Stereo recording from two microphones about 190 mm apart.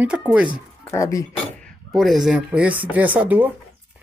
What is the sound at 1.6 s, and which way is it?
Speech, centre (ahead or behind).